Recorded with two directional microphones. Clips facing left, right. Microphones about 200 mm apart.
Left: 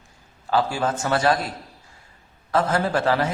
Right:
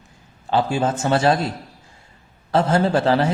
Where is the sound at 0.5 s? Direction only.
25° right (ahead or behind).